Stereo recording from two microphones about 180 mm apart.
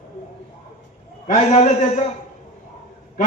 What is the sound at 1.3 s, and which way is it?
Speech, 40° left (ahead or behind).